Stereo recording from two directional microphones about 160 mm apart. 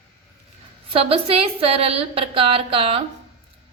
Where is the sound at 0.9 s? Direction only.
35° right (ahead or behind).